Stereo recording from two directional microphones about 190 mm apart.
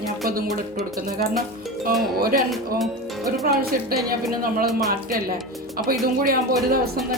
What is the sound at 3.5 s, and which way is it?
Music, 55° right (ahead or behind).